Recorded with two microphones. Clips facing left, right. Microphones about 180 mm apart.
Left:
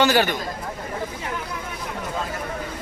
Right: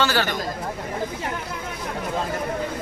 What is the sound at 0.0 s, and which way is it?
Speech, 15° left (ahead or behind).